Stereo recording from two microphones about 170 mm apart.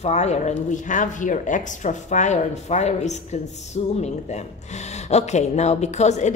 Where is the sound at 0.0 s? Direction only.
40° left (ahead or behind).